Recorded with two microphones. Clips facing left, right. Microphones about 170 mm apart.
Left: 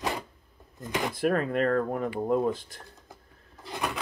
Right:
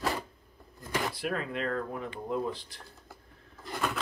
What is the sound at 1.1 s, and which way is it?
Speech, 50° left (ahead or behind).